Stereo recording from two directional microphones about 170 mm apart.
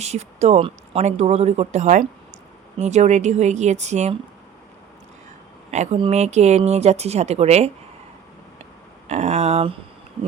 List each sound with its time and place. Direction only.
0.0 s a woman's voice: 40° right (ahead or behind)
5.7 s a woman's voice: 40° right (ahead or behind)
9.0 s speech: 40° right (ahead or behind)